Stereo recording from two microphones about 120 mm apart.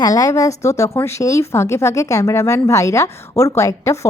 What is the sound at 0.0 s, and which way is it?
A woman's voice, 30° left (ahead or behind).